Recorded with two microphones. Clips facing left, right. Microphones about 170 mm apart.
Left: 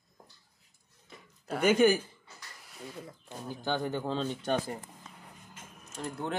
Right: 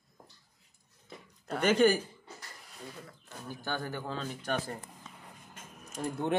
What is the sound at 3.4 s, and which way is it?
Speech, 20° left (ahead or behind).